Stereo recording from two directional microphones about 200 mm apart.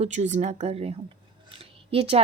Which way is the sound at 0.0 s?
35° right (ahead or behind).